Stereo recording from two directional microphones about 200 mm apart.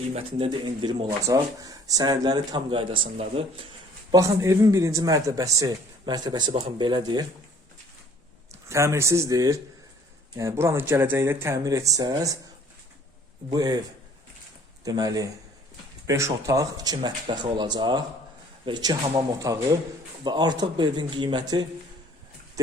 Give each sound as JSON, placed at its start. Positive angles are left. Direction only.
{"t": 0.2, "sound": "speech", "side_deg": -25}
{"t": 4.1, "sound": "a man's voice", "side_deg": -15}
{"t": 8.7, "sound": "a man's voice", "side_deg": -15}
{"t": 13.5, "sound": "speech", "side_deg": -20}
{"t": 14.8, "sound": "a man's voice", "side_deg": -20}